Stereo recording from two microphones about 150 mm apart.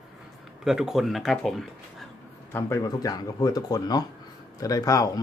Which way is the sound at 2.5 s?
20° left (ahead or behind).